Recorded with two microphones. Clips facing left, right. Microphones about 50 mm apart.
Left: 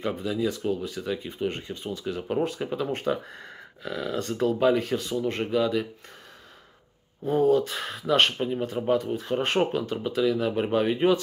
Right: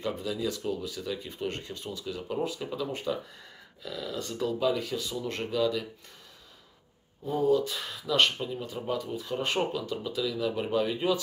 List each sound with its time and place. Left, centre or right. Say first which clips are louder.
0.0 s speech: left 4 dB; centre; by 5.2 s left
5.2 s speech: left 2 dB; left
7.2 s speech: left 4 dB; left